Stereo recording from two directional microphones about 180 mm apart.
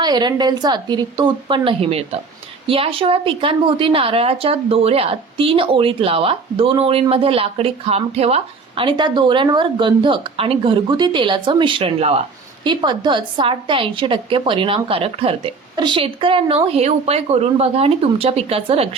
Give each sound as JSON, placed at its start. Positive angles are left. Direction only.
{"t": 0.0, "sound": "a woman's voice", "side_deg": -25}